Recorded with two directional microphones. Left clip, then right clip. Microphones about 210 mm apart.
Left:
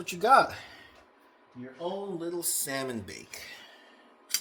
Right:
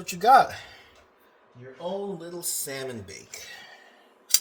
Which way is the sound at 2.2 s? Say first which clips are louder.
Left 1 dB; 45° left (ahead or behind).